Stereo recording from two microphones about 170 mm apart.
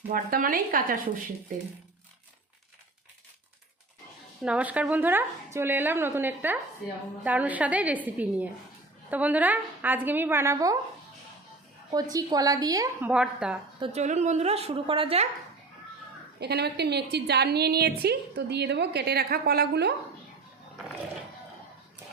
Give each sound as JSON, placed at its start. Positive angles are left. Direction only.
{"t": 0.1, "sound": "speech", "side_deg": -55}
{"t": 4.4, "sound": "a woman's voice", "side_deg": -5}
{"t": 11.9, "sound": "a woman's voice", "side_deg": -20}
{"t": 13.0, "sound": "a woman's voice", "side_deg": -5}
{"t": 13.7, "sound": "speech", "side_deg": -35}
{"t": 16.4, "sound": "a woman's voice", "side_deg": -75}